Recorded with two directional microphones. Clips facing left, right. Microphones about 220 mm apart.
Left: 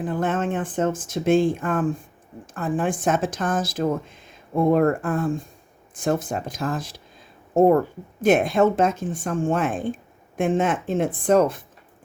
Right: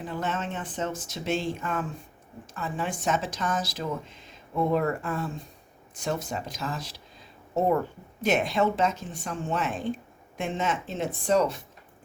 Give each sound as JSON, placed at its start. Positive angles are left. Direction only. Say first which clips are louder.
{"t": 0.0, "sound": "a woman's voice", "louder": "left 8 dB", "side_deg": 50}